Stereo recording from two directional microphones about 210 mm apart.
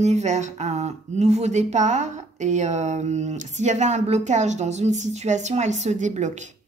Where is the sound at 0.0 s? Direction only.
35° right (ahead or behind).